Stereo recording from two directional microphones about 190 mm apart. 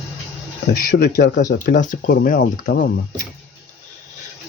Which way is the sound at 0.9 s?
50° left (ahead or behind).